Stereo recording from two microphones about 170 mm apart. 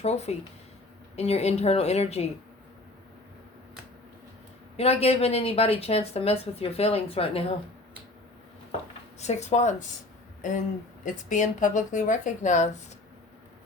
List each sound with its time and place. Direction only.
0.0 s a woman's voice: 40° left (ahead or behind)
4.8 s a woman's voice: 35° left (ahead or behind)
9.1 s a woman's voice: 40° left (ahead or behind)
11.0 s speech: 50° left (ahead or behind)